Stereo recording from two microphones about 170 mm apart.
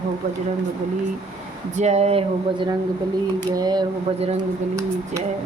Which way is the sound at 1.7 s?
40° right (ahead or behind).